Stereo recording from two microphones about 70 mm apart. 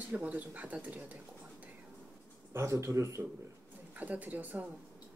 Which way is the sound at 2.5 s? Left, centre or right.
Right.